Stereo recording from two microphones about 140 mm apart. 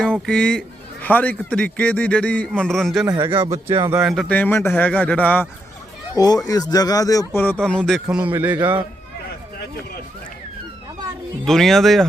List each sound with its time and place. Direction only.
0.3 s a man's voice: 5° left (ahead or behind)
3.1 s speech: 35° right (ahead or behind)
3.3 s speech: 20° right (ahead or behind)
3.9 s speech: centre (ahead or behind)
4.3 s a man's voice: 15° left (ahead or behind)
6.1 s speech: 25° left (ahead or behind)
7.4 s a man's voice: 10° left (ahead or behind)
8.1 s a man's voice: 10° right (ahead or behind)
11.4 s speech: centre (ahead or behind)